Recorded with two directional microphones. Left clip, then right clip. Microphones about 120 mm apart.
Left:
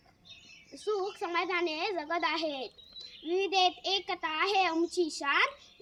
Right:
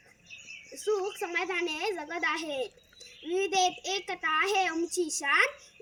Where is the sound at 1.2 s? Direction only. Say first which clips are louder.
Even; 15° left (ahead or behind).